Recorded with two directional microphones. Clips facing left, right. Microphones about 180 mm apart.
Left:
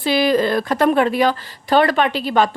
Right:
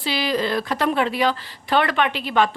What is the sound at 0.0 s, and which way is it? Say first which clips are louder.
A woman's voice: left 7 dB; 50° left (ahead or behind).